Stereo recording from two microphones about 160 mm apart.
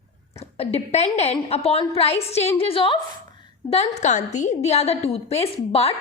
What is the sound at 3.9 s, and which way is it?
A woman's voice, 45° left (ahead or behind).